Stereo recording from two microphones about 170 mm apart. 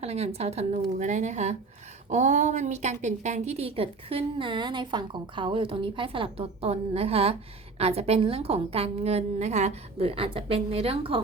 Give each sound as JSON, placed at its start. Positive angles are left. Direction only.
{"t": 0.0, "sound": "a woman's voice", "side_deg": -40}